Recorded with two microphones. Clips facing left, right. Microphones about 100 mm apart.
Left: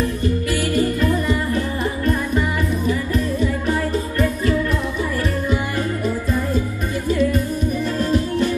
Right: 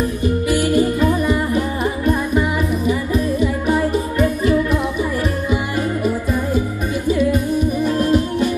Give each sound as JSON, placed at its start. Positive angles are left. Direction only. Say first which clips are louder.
{"t": 0.0, "sound": "music", "louder": "right 2 dB", "side_deg": -15}
{"t": 2.9, "sound": "music", "louder": "right 3 dB", "side_deg": -15}
{"t": 6.0, "sound": "music", "louder": "right 2 dB", "side_deg": -15}